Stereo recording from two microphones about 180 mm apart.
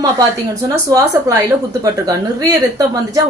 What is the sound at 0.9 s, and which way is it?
Speech, 20° right (ahead or behind).